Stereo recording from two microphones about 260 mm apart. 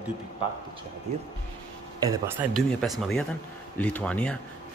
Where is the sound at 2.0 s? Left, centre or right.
Centre.